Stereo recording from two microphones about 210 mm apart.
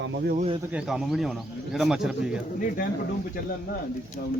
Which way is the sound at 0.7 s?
Centre (ahead or behind).